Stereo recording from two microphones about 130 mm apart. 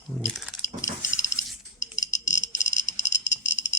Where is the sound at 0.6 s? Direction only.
25° left (ahead or behind).